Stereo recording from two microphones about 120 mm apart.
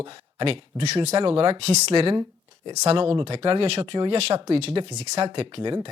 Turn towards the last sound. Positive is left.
turn(degrees=-40)  # may be behind; listen again after turning